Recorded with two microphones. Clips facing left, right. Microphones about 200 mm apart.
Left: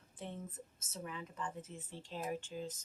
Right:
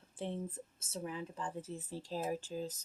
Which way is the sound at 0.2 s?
30° right (ahead or behind).